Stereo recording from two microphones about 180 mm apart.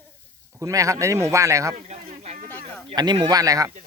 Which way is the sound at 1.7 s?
40° right (ahead or behind).